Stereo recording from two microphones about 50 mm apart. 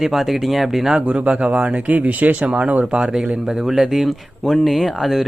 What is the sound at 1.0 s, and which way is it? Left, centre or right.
Speech, right.